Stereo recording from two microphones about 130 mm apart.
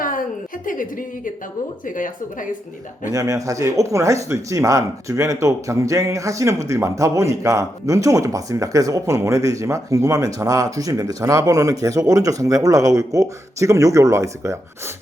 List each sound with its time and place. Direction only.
0.6 s a woman's voice: 90° left
3.1 s speech: 25° right (ahead or behind)